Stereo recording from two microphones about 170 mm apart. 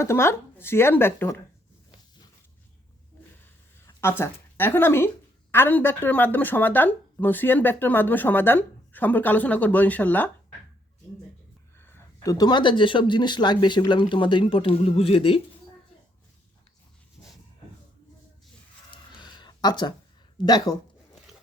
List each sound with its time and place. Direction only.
0.0 s a woman's voice: 15° left (ahead or behind)
4.0 s a woman's voice: 15° left (ahead or behind)
11.9 s speech: 15° left (ahead or behind); by 15.4 s 35° left (ahead or behind)
19.2 s a sound: 25° left (ahead or behind)
20.4 s speech: 25° left (ahead or behind)